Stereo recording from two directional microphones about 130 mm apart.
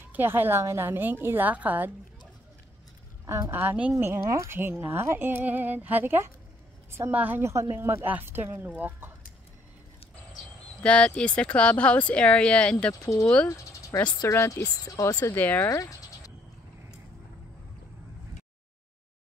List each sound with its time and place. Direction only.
0.1 s speech: 15° right (ahead or behind)
3.3 s a woman's voice: 20° right (ahead or behind)
3.9 s speech: 25° right (ahead or behind)
10.8 s speech: 10° left (ahead or behind)
13.0 s speech: 25° left (ahead or behind)
15.3 s speech: 15° left (ahead or behind)
15.7 s speech: 25° left (ahead or behind)